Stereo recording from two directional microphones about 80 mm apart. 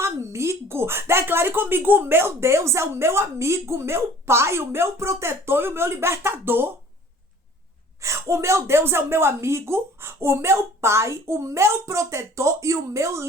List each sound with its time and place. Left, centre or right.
0.0 s speech: right
8.0 s speech: right